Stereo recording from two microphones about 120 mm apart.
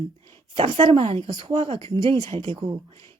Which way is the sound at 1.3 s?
40° right (ahead or behind).